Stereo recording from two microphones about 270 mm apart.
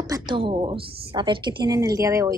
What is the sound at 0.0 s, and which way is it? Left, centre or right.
A woman's voice, centre.